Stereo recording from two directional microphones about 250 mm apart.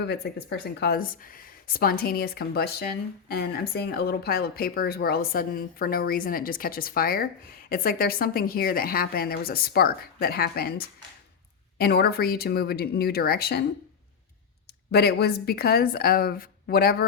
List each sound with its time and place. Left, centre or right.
0.5 s a woman's voice: left
14.9 s a woman's voice: left